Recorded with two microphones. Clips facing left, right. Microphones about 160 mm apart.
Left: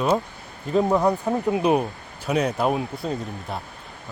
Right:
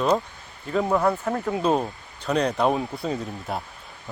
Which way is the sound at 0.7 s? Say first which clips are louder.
Left 2 dB; 15° left (ahead or behind).